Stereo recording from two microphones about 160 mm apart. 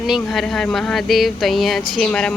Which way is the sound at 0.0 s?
Centre (ahead or behind).